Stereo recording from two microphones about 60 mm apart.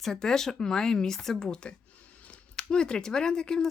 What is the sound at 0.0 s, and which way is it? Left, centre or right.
Speech, centre.